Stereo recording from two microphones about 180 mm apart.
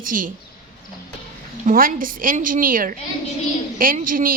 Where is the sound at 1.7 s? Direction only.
50° right (ahead or behind).